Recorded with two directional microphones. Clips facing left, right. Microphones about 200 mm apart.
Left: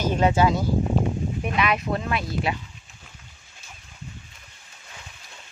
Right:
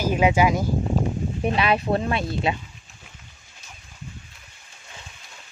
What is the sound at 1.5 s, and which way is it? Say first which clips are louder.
Speech: right 4 dB; 30° right (ahead or behind).